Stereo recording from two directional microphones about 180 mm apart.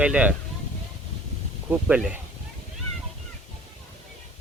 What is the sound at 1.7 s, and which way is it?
Speech, 5° right (ahead or behind).